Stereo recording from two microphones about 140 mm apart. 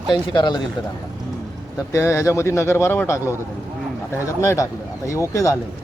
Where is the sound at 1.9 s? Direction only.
20° left (ahead or behind).